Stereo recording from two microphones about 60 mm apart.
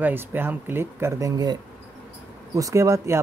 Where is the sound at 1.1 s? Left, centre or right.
Right.